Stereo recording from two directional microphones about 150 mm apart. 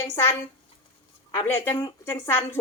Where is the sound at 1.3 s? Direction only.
15° left (ahead or behind).